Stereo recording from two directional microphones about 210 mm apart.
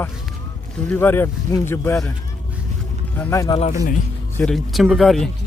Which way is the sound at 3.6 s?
35° left (ahead or behind).